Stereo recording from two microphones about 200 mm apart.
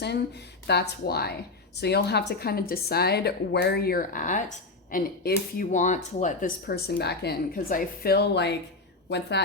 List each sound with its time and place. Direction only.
0.7 s a woman's voice: 55° left (ahead or behind)